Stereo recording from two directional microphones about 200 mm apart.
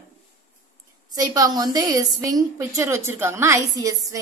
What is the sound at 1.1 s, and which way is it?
A woman's voice, 20° right (ahead or behind).